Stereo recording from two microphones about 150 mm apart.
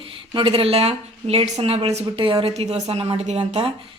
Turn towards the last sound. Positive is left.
turn(degrees=-40)  # may be behind; listen again after turning